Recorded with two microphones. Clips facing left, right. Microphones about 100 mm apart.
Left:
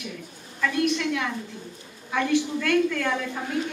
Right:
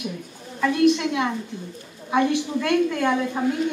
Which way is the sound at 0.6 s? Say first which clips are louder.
Right 6 dB; 25° right (ahead or behind).